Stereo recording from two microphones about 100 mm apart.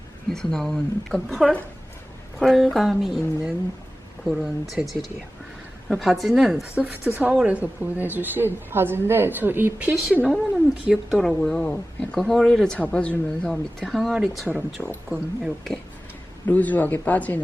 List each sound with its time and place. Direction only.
0.3 s a woman's voice: 5° left (ahead or behind)
16.5 s speech: 15° left (ahead or behind)